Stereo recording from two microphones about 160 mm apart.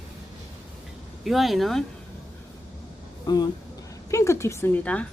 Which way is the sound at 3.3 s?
25° left (ahead or behind).